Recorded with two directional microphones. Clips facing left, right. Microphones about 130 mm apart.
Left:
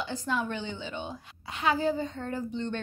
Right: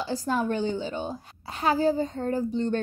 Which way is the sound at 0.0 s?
35° right (ahead or behind).